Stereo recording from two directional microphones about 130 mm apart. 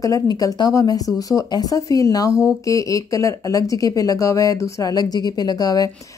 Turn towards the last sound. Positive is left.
turn(degrees=30)  # may be behind; listen again after turning